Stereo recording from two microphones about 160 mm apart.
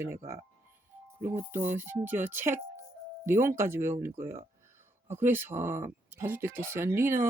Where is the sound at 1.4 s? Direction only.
15° right (ahead or behind).